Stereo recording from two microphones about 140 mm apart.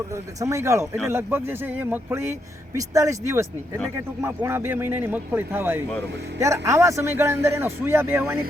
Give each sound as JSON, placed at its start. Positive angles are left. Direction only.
{"t": 0.1, "sound": "a man's voice", "side_deg": -20}